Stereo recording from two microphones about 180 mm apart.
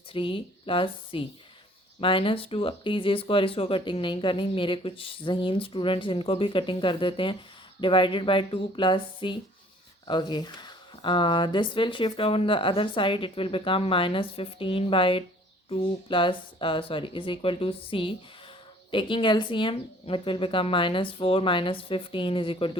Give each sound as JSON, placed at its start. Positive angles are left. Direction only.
{"t": 0.1, "sound": "speech", "side_deg": 30}